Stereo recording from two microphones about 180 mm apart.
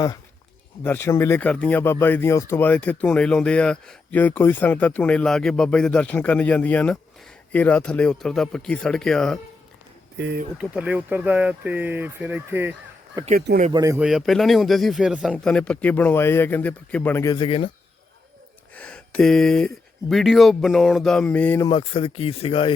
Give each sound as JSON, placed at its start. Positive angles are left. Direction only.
{"t": 0.9, "sound": "speech", "side_deg": 15}
{"t": 10.2, "sound": "speech", "side_deg": -80}
{"t": 10.6, "sound": "speech", "side_deg": -5}
{"t": 13.2, "sound": "speech", "side_deg": -45}
{"t": 13.7, "sound": "speech", "side_deg": -20}
{"t": 14.0, "sound": "speech", "side_deg": 0}
{"t": 17.3, "sound": "speech", "side_deg": 30}
{"t": 18.7, "sound": "speech", "side_deg": 5}
{"t": 21.7, "sound": "speech", "side_deg": 30}